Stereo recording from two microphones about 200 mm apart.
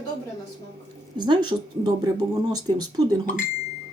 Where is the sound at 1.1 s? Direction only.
20° right (ahead or behind).